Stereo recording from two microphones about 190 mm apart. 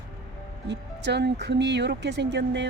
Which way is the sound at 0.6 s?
65° right (ahead or behind).